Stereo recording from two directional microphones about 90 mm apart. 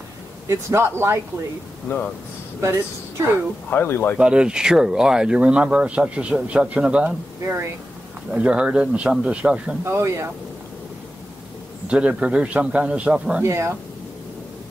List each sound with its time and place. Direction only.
0.5 s speech: 30° right (ahead or behind)
1.9 s speech: 20° left (ahead or behind)
2.6 s speech: 35° right (ahead or behind)
3.7 s speech: 20° left (ahead or behind)
4.2 s speech: 10° right (ahead or behind)
8.3 s speech: 10° right (ahead or behind)
9.8 s speech: 30° right (ahead or behind)
11.9 s speech: 15° right (ahead or behind)
13.4 s speech: 30° right (ahead or behind)